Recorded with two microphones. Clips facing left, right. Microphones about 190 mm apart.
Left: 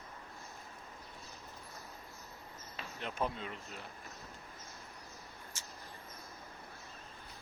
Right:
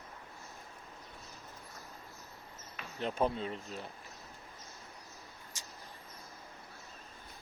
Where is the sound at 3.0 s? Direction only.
35° right (ahead or behind).